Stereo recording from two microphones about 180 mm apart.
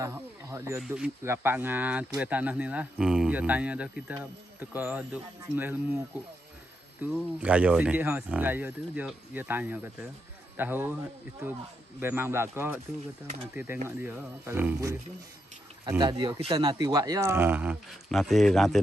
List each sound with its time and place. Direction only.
0.0 s speech: 15° right (ahead or behind)
0.7 s speech: 5° right (ahead or behind)
7.1 s speech: 5° right (ahead or behind)
13.8 s speech: 10° right (ahead or behind)
16.0 s speech: 25° right (ahead or behind); by 18.8 s centre (ahead or behind)